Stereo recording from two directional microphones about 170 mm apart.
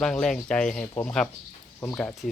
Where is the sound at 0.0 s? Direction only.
5° left (ahead or behind).